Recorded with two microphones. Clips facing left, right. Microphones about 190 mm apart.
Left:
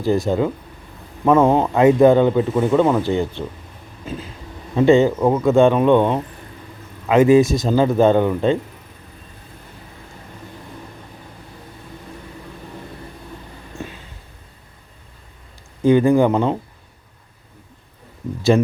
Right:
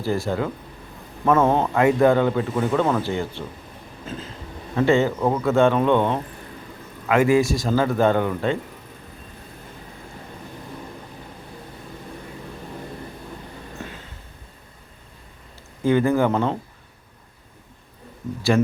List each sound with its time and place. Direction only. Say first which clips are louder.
0.0 s a man's voice: left 6 dB; 20° left (ahead or behind)
4.7 s a man's voice: left 5 dB; 15° left (ahead or behind)
15.8 s a man's voice: left 5 dB; 15° left (ahead or behind)
18.5 s speech: left 2 dB; 20° left (ahead or behind)